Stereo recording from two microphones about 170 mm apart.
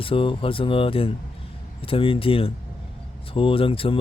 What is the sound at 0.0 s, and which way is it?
Speech, 30° left (ahead or behind).